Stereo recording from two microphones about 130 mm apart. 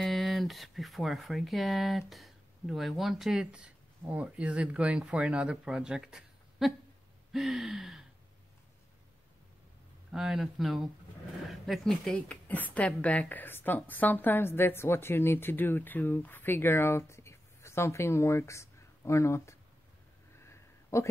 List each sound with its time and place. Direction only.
0.0 s speech: centre (ahead or behind)
10.1 s a woman's voice: 5° right (ahead or behind); by 19.6 s 20° left (ahead or behind)
20.3 s a sound: 20° left (ahead or behind)